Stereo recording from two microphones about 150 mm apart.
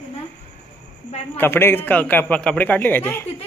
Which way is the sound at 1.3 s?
15° left (ahead or behind).